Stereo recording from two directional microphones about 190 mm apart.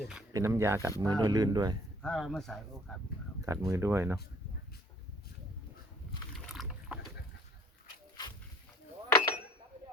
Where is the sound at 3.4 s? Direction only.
15° right (ahead or behind).